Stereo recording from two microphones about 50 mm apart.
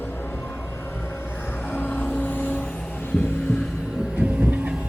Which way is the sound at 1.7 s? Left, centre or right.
Left.